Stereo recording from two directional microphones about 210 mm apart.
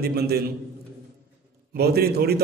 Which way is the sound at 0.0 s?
50° right (ahead or behind).